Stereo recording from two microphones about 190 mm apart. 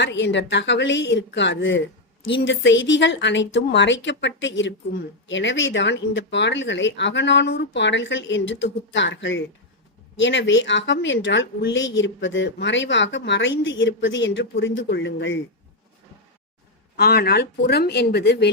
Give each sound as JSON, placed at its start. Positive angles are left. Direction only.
{"t": 0.0, "sound": "speech", "side_deg": 70}
{"t": 17.0, "sound": "speech", "side_deg": 55}